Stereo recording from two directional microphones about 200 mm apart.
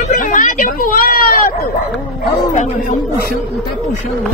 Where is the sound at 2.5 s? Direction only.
40° left (ahead or behind).